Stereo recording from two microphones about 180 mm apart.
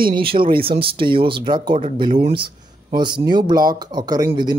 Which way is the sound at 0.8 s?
30° right (ahead or behind).